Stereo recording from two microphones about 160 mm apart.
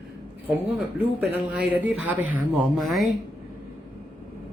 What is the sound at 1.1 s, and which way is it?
Speech, 10° right (ahead or behind).